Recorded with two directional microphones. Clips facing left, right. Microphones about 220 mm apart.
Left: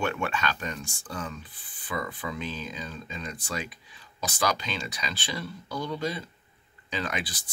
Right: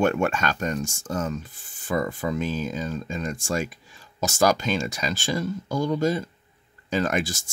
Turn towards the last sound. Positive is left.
turn(degrees=-45)  # may be behind; listen again after turning